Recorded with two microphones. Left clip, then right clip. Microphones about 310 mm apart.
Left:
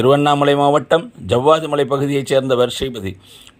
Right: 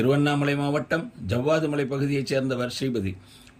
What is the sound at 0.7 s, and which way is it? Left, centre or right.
Speech, left.